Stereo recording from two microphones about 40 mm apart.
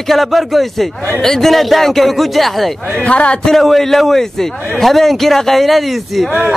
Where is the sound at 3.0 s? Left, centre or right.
Left.